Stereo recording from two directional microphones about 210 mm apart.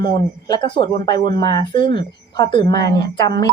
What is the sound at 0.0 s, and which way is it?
Speech, 50° right (ahead or behind).